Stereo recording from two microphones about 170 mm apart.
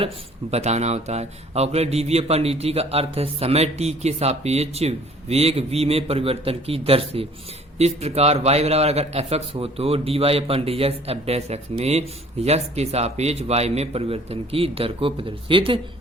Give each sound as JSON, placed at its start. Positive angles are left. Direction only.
{"t": 0.5, "sound": "a man's voice", "side_deg": -40}